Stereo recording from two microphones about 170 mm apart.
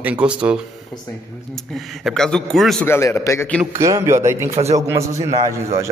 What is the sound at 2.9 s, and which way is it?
Speech, 15° left (ahead or behind).